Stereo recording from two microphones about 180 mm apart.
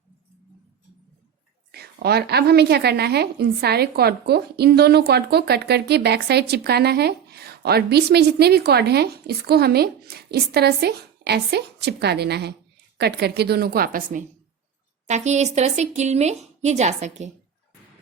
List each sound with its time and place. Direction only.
1.7 s a woman's voice: 60° right (ahead or behind); by 17.3 s 40° right (ahead or behind)